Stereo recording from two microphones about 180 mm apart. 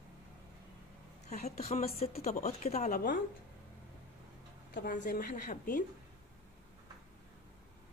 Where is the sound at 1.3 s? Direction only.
35° left (ahead or behind).